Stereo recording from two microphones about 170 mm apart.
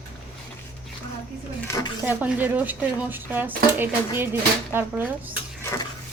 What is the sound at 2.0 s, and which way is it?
Speech, 10° right (ahead or behind).